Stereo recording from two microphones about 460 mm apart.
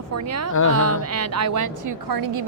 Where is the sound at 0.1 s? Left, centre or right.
Right.